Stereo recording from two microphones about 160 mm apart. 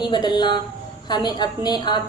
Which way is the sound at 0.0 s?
25° left (ahead or behind).